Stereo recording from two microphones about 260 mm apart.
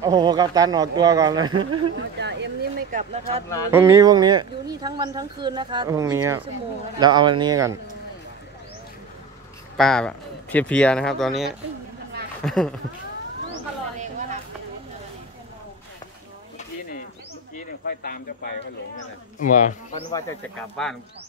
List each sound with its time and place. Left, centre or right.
0.0 s speech: centre
2.0 s a sound: right
3.4 s speech: centre
3.7 s speech: centre
9.8 s speech: centre
13.9 s a sound: right
17.8 s speech: left
20.1 s speech: centre
20.7 s speech: centre